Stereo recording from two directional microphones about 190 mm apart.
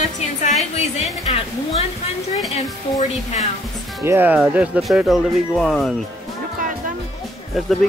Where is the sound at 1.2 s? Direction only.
35° left (ahead or behind).